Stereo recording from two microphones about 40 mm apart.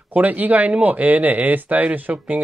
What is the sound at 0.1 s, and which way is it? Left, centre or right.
Speech, right.